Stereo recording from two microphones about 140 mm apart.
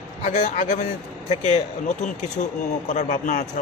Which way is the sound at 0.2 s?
60° left (ahead or behind).